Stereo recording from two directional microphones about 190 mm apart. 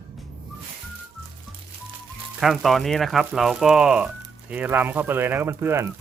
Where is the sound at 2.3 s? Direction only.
Centre (ahead or behind).